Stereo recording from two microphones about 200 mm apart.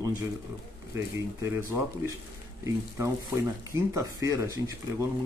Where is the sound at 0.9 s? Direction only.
15° right (ahead or behind).